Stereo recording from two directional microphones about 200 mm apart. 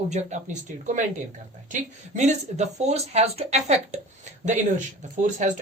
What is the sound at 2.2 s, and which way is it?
Speech, 35° right (ahead or behind).